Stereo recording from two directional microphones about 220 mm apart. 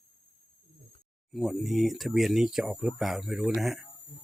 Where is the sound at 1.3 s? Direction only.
Centre (ahead or behind).